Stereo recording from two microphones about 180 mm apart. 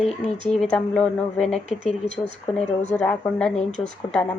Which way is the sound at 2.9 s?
5° left (ahead or behind).